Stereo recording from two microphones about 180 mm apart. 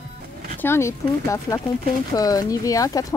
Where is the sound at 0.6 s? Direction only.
15° left (ahead or behind).